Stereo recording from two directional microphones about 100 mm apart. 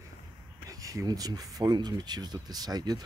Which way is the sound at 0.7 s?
35° right (ahead or behind).